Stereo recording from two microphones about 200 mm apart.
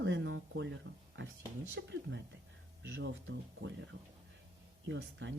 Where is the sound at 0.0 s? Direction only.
65° right (ahead or behind).